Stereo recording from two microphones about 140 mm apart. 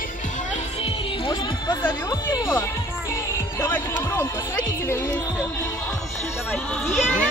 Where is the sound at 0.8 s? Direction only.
30° left (ahead or behind).